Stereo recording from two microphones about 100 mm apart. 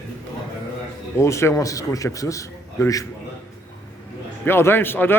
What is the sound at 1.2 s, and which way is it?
A man's voice, 30° left (ahead or behind).